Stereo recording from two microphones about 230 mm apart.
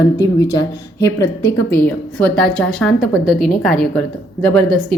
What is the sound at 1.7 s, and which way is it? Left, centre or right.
A woman's voice, centre.